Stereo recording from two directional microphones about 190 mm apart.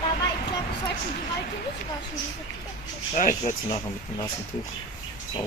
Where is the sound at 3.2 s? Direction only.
40° left (ahead or behind).